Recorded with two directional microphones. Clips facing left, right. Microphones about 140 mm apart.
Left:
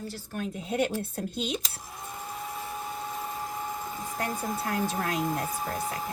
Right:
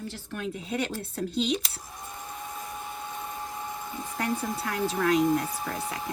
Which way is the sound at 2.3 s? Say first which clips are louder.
Left 2 dB; 30° left (ahead or behind).